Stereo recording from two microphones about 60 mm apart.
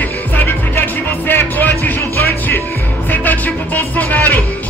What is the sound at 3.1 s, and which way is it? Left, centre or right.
Music, left.